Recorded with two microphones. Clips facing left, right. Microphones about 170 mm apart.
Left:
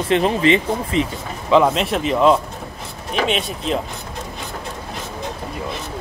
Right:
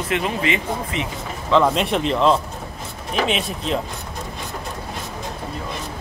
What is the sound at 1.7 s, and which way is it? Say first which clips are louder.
Speech: left 1 dB; centre (ahead or behind).